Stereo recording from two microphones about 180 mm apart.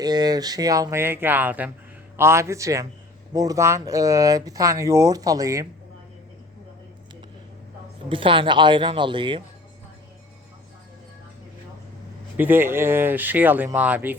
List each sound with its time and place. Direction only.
0.0 s speech: 20° right (ahead or behind)
8.1 s speech: 30° right (ahead or behind)
12.4 s speech: 10° right (ahead or behind)